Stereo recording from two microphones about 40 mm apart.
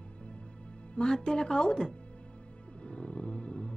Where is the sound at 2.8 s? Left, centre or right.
Left.